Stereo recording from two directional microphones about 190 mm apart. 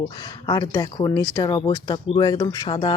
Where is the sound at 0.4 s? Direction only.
20° left (ahead or behind).